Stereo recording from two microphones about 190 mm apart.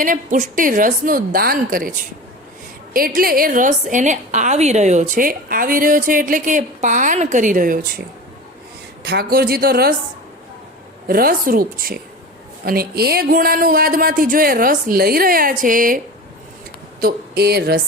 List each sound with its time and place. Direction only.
0.0 s a woman's voice: 40° right (ahead or behind)
9.0 s a woman's voice: 55° right (ahead or behind)
11.1 s a woman's voice: 50° right (ahead or behind)
17.0 s speech: 55° right (ahead or behind)